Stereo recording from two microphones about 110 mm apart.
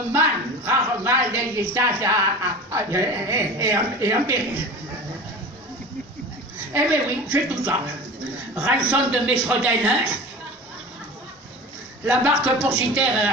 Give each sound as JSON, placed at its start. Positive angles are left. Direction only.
{"t": 0.1, "sound": "a sound", "side_deg": -20}
{"t": 2.7, "sound": "a man's voice", "side_deg": -25}
{"t": 6.7, "sound": "a man's voice", "side_deg": -20}
{"t": 12.0, "sound": "a man's voice", "side_deg": -15}